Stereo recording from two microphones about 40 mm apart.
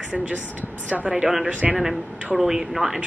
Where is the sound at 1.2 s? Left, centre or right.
Centre.